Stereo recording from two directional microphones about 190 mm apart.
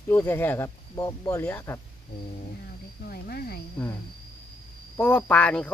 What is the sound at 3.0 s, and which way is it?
Speech, 50° left (ahead or behind).